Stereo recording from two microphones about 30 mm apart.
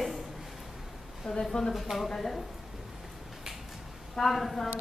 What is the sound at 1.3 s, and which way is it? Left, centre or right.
A woman's voice, centre.